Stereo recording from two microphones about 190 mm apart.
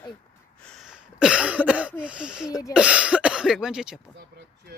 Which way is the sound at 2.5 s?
15° left (ahead or behind).